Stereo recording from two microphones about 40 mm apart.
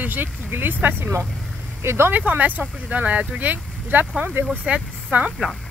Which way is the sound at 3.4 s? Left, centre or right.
Right.